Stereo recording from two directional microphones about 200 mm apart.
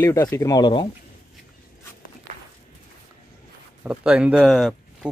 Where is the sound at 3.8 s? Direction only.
5° right (ahead or behind).